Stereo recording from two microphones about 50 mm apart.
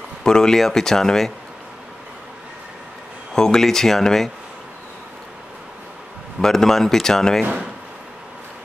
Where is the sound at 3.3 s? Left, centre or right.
Centre.